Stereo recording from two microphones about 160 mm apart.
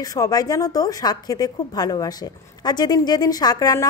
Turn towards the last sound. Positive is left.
turn(degrees=20)  # may be behind; listen again after turning